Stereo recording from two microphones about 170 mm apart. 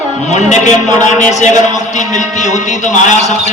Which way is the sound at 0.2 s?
45° left (ahead or behind).